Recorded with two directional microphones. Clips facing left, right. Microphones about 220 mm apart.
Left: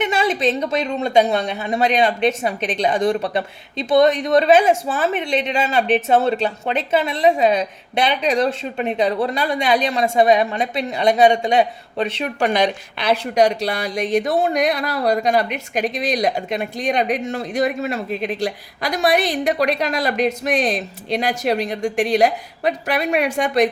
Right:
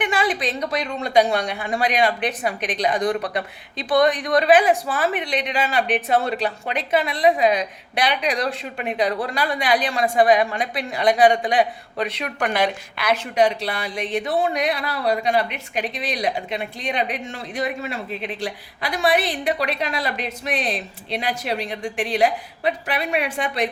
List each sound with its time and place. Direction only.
0.0 s a woman's voice: 25° left (ahead or behind)
13.3 s speech: 40° left (ahead or behind)